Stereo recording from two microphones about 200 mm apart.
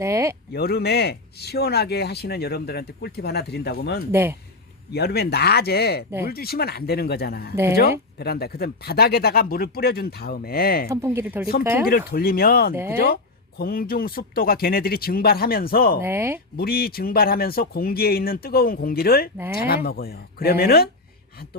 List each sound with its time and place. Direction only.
0.0 s speech: 15° right (ahead or behind)
0.5 s speech: 50° left (ahead or behind)
4.1 s speech: 10° right (ahead or behind)
4.9 s speech: 55° left (ahead or behind)
7.5 s speech: 15° right (ahead or behind)
7.8 s speech: 50° left (ahead or behind)
10.8 s speech: 15° right (ahead or behind)
11.9 s speech: 50° left (ahead or behind)
12.7 s speech: 10° right (ahead or behind)
13.6 s speech: 45° left (ahead or behind)
16.0 s speech: 10° right (ahead or behind)
16.6 s speech: 50° left (ahead or behind)